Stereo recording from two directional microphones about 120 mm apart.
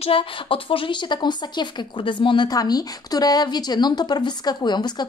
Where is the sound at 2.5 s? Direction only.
30° left (ahead or behind).